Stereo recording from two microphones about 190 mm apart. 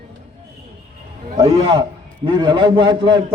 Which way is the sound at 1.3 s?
25° right (ahead or behind).